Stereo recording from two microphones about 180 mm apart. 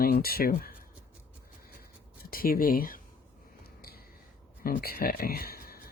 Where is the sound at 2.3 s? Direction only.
55° left (ahead or behind).